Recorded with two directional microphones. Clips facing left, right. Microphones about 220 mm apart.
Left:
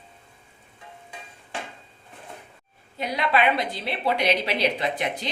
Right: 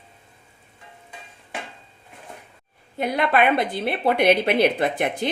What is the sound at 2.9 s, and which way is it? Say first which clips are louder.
A woman's voice: right 4 dB; 55° right (ahead or behind).